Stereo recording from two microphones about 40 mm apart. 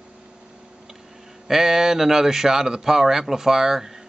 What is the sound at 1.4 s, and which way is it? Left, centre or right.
Speech, centre.